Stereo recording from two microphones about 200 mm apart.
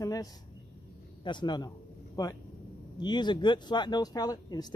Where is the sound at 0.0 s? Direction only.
20° left (ahead or behind).